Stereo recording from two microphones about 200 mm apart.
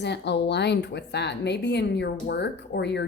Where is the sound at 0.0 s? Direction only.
60° left (ahead or behind).